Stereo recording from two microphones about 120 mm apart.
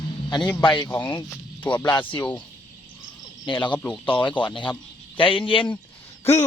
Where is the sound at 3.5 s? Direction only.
40° left (ahead or behind).